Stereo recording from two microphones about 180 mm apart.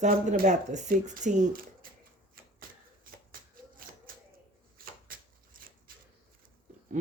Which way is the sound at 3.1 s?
50° right (ahead or behind).